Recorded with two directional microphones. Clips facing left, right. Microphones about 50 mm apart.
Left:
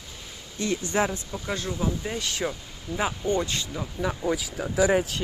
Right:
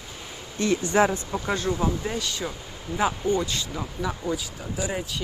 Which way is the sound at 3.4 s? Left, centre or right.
Left.